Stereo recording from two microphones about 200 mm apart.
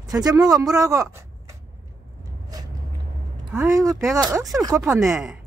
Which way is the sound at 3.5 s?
15° right (ahead or behind).